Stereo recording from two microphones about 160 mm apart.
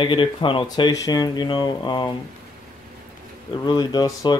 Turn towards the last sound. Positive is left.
turn(degrees=25)  # may be behind; listen again after turning